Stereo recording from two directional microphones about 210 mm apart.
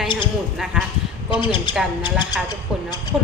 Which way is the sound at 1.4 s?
25° left (ahead or behind).